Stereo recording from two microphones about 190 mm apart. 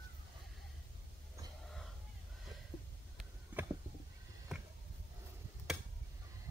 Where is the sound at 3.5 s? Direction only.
10° right (ahead or behind).